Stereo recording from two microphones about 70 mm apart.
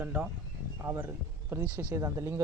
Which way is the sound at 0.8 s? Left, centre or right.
Right.